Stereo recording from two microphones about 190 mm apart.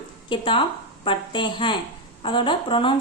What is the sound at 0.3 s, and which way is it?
A woman's voice, 25° left (ahead or behind).